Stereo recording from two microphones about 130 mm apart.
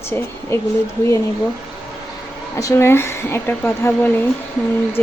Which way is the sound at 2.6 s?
25° left (ahead or behind).